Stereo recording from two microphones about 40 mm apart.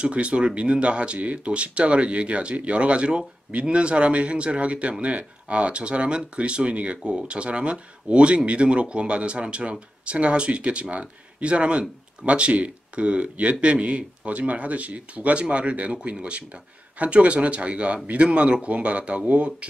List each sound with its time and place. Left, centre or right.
0.0 s speech: right
7.0 s speech: right